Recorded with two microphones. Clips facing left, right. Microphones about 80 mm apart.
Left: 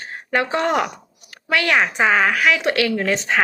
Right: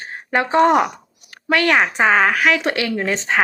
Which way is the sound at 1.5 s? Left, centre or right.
Right.